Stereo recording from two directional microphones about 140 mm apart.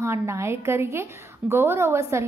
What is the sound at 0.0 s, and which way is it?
A woman's voice, 20° right (ahead or behind).